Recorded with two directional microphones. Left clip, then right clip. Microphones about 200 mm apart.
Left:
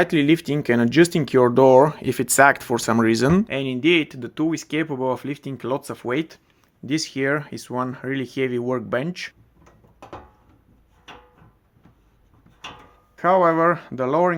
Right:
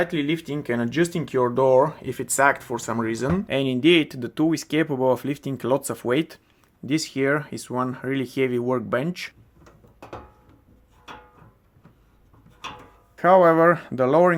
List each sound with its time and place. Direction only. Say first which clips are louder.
0.0 s speech: left 6 dB; 40° left (ahead or behind)
3.4 s speech: right 1 dB; 10° right (ahead or behind)
13.1 s speech: right 2 dB; 10° right (ahead or behind)